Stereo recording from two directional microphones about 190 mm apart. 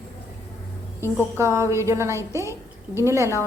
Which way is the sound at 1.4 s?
15° right (ahead or behind).